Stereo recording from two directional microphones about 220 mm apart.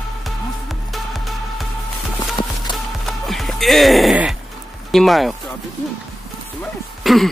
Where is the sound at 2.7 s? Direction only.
Centre (ahead or behind).